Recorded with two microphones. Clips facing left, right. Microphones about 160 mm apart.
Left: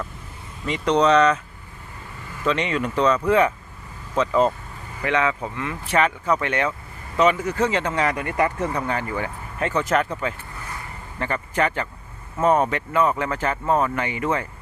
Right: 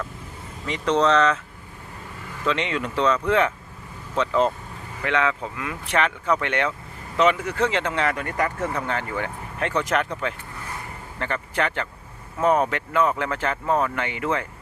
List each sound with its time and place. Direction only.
1.0 s speech: 15° left (ahead or behind)
2.4 s speech: 5° left (ahead or behind)